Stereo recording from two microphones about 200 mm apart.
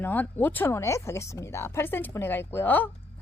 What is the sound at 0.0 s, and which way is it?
A woman's voice, 10° left (ahead or behind).